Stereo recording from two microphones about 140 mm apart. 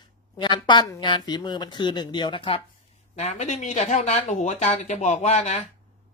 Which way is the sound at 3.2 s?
55° left (ahead or behind).